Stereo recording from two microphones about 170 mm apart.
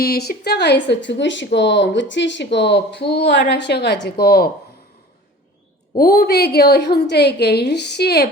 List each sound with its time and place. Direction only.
0.0 s a woman's voice: 70° left (ahead or behind)
6.0 s a woman's voice: 65° left (ahead or behind)